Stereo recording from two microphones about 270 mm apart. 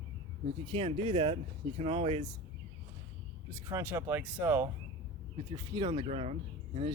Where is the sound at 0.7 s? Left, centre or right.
Right.